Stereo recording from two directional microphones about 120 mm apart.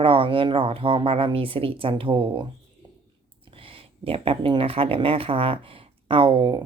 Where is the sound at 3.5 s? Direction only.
50° right (ahead or behind).